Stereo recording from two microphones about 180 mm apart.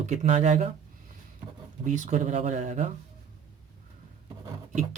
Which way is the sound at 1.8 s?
45° right (ahead or behind).